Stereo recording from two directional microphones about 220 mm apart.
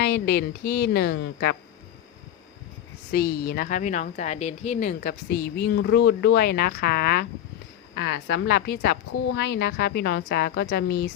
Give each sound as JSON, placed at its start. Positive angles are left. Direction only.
{"t": 0.0, "sound": "speech", "side_deg": 50}
{"t": 3.1, "sound": "speech", "side_deg": 45}